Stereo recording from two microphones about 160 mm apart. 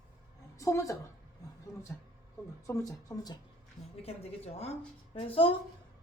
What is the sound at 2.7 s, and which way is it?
Speech, 20° left (ahead or behind).